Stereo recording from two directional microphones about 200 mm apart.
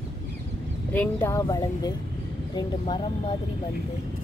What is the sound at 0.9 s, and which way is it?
Speech, 10° left (ahead or behind).